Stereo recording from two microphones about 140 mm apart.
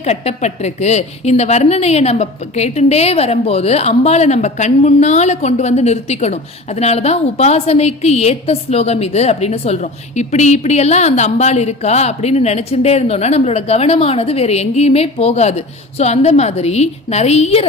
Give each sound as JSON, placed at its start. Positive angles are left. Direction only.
{"t": 0.0, "sound": "a woman's voice", "side_deg": 50}